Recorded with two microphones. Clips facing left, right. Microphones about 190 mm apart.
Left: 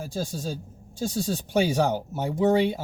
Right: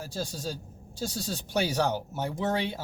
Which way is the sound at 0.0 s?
15° left (ahead or behind).